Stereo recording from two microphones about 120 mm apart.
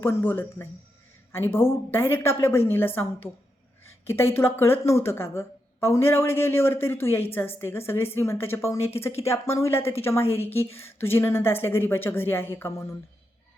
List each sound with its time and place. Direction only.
0.0 s a woman's voice: 20° left (ahead or behind)